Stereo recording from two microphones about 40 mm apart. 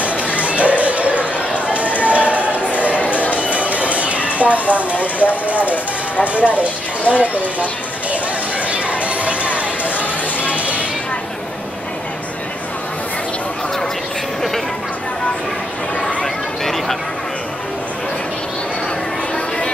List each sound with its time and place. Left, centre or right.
0.0 s chatter: right
1.7 s run: right
3.3 s music: right
4.4 s speech: right
8.6 s chatter: right
9.0 s a sound: right
10.4 s music: right
16.2 s chatter: centre